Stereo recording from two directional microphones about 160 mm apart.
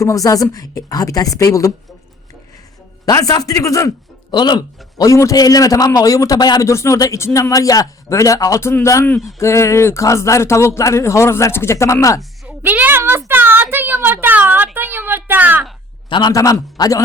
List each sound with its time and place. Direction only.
0.0 s speech: 20° left (ahead or behind)
3.1 s speech: 20° left (ahead or behind)
12.5 s a sound: 10° right (ahead or behind)
16.0 s speech: 30° left (ahead or behind)